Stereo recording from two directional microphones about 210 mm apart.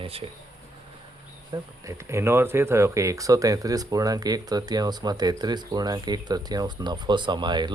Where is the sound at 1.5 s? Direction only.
15° right (ahead or behind).